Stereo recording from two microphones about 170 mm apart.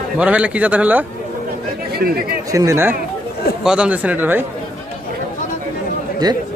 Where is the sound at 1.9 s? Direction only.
65° right (ahead or behind).